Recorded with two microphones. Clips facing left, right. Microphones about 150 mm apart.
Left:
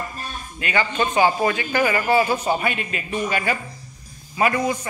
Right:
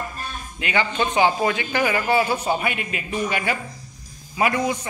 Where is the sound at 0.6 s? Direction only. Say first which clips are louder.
Even; 15° right (ahead or behind).